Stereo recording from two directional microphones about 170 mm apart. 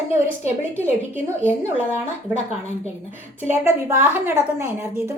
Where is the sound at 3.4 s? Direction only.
15° right (ahead or behind).